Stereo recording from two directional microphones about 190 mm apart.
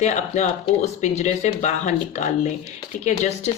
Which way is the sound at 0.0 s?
35° left (ahead or behind).